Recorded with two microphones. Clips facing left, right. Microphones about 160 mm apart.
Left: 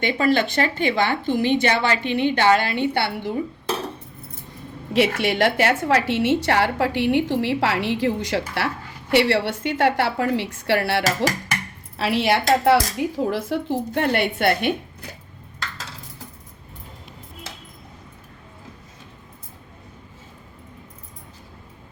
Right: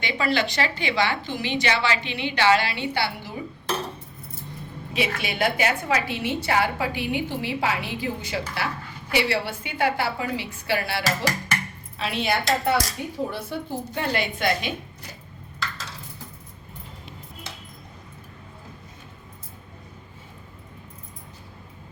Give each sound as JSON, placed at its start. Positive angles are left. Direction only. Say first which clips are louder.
{"t": 0.0, "sound": "a woman's voice", "louder": "left 5 dB", "side_deg": 50}
{"t": 4.9, "sound": "a woman's voice", "louder": "left 7 dB", "side_deg": 75}